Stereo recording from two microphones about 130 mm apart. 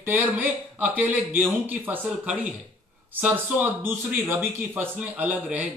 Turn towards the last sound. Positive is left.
turn(degrees=-10)  # may be behind; listen again after turning